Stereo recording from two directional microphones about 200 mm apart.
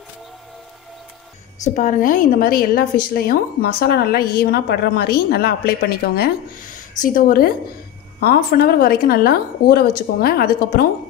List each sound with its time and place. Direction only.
1.6 s a woman's voice: 40° left (ahead or behind)